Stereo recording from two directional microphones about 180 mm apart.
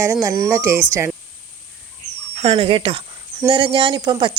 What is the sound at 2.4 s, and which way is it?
Speech, 30° right (ahead or behind).